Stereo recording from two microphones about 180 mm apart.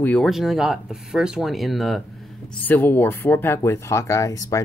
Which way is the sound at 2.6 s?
10° left (ahead or behind).